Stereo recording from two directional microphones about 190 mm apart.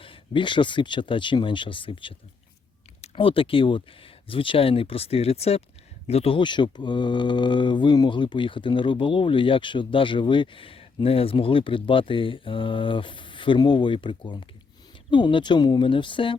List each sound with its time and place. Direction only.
0.0 s speech: 25° left (ahead or behind)